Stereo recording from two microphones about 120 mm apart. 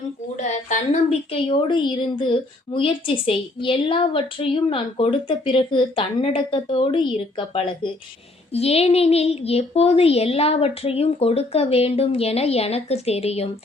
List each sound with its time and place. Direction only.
1.3 s a woman's voice: 45° left (ahead or behind)
8.5 s speech: 60° left (ahead or behind)